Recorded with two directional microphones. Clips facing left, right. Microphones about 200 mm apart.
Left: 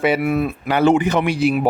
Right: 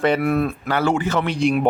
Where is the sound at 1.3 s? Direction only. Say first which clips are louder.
Left 1 dB; 5° left (ahead or behind).